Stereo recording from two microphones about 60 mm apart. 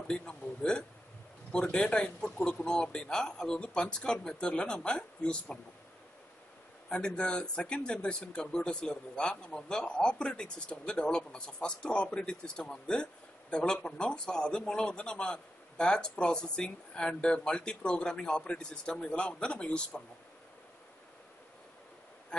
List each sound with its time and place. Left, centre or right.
0.1 s speech: centre
6.9 s speech: centre